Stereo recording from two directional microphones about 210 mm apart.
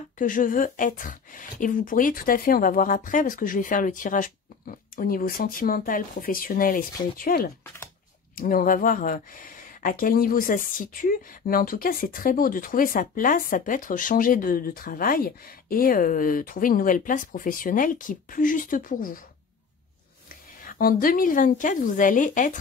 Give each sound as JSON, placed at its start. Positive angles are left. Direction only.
{"t": 0.2, "sound": "speech", "side_deg": 40}
{"t": 7.6, "sound": "typing", "side_deg": 10}
{"t": 8.4, "sound": "speech", "side_deg": 40}
{"t": 20.6, "sound": "speech", "side_deg": 40}